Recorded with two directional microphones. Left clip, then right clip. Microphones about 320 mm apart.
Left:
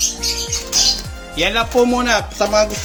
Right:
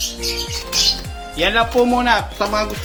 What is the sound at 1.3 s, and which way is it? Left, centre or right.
Music, centre.